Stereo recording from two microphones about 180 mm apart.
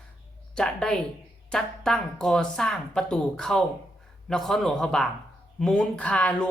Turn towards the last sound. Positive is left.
turn(degrees=5)  # may be behind; listen again after turning